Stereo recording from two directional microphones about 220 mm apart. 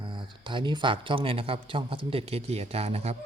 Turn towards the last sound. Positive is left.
turn(degrees=-30)  # may be behind; listen again after turning